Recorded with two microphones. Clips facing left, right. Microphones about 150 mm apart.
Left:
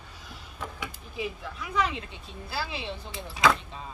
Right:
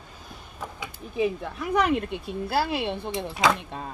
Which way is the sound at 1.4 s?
55° right (ahead or behind).